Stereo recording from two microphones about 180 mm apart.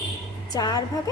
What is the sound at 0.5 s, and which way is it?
Speech, 20° left (ahead or behind).